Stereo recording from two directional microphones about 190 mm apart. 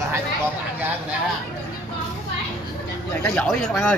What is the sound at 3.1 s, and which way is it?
Speech, 10° left (ahead or behind).